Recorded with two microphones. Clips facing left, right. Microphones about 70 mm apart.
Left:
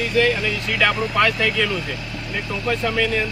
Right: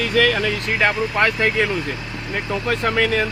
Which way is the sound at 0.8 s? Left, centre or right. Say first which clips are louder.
Even; right.